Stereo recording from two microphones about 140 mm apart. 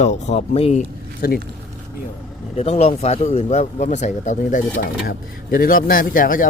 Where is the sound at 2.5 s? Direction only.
50° left (ahead or behind); by 5.1 s 80° left.